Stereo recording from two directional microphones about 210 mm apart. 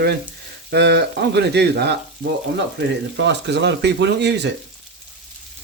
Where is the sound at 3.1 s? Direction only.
55° right (ahead or behind).